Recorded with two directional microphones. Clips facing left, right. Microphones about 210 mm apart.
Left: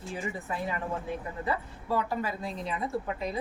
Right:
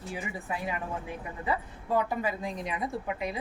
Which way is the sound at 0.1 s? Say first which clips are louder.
Left 1 dB; 10° right (ahead or behind).